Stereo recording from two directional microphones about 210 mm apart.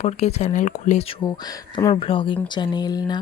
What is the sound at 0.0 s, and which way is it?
Speech, 30° left (ahead or behind).